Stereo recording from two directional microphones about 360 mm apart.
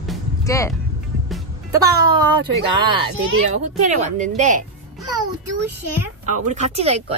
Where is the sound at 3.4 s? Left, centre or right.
Centre.